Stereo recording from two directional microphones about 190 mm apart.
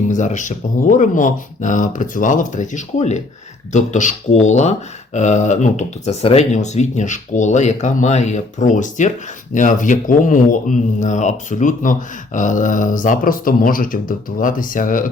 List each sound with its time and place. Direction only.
0.1 s speech: 40° left (ahead or behind)